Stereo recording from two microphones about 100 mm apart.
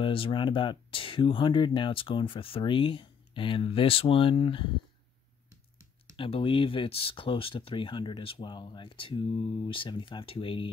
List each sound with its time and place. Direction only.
0.0 s speech: 60° left (ahead or behind)
6.1 s speech: 65° left (ahead or behind)